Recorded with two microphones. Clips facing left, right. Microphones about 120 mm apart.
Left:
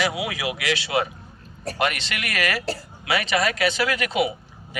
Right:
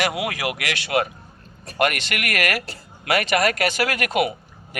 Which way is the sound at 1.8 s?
50° right (ahead or behind).